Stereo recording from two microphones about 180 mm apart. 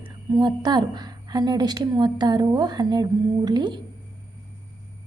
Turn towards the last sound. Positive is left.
turn(degrees=-25)  # may be behind; listen again after turning